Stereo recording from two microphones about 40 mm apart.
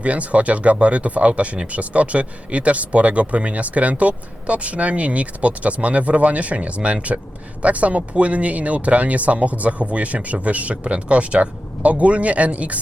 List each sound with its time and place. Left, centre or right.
0.0 s speech: right